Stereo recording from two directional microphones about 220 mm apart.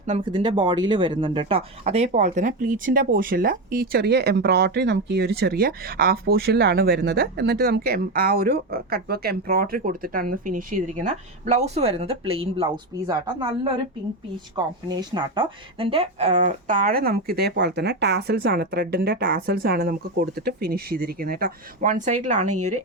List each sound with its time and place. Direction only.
0.3 s speech: 20° right (ahead or behind)
14.5 s speech: 20° right (ahead or behind)